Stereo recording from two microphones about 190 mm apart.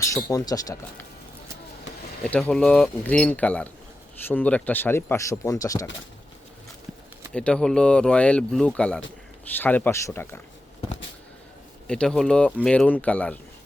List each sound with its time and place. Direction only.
0.0 s speech: 15° left (ahead or behind)
2.2 s speech: 5° left (ahead or behind)
7.3 s speech: 5° left (ahead or behind)
11.9 s speech: 5° left (ahead or behind)